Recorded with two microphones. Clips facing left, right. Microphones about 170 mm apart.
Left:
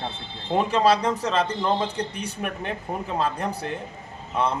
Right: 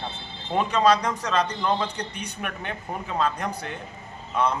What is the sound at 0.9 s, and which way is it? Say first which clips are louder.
A man's voice: left 1 dB; 30° left (ahead or behind).